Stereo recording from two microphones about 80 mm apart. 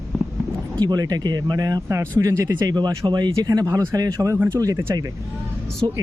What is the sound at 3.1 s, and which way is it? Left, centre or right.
Speech, right.